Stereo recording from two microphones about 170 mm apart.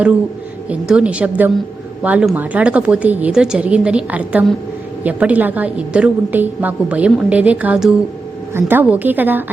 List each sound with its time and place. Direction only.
0.7 s a woman's voice: 5° right (ahead or behind)